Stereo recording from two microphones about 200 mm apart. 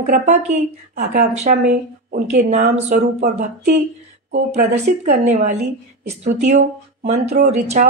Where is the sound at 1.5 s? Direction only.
50° right (ahead or behind).